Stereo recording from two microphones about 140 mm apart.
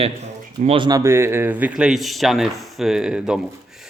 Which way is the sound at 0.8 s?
25° right (ahead or behind).